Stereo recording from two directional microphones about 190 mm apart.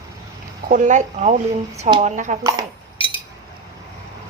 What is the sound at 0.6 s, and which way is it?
Speech, 40° right (ahead or behind).